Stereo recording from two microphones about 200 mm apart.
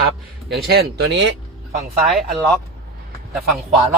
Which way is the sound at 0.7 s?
50° right (ahead or behind).